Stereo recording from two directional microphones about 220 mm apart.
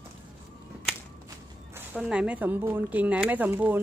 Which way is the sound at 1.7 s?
5° right (ahead or behind).